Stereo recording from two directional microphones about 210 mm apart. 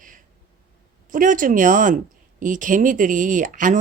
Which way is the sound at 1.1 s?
40° right (ahead or behind).